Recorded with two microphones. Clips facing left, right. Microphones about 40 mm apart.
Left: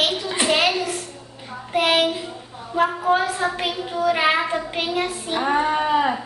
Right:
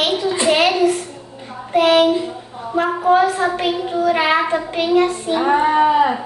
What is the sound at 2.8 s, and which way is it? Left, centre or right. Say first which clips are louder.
Speech: right 7 dB; centre.